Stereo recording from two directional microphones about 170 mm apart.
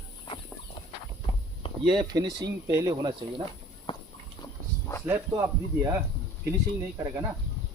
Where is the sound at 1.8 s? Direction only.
25° right (ahead or behind).